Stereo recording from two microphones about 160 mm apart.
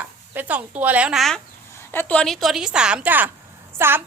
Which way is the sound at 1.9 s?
10° left (ahead or behind).